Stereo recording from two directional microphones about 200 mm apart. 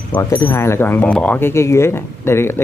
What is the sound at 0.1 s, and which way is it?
Speech, 10° left (ahead or behind).